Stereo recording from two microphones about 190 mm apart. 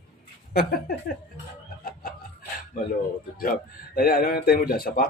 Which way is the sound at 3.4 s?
50° left (ahead or behind).